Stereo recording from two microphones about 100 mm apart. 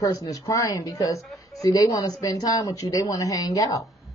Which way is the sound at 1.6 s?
35° left (ahead or behind).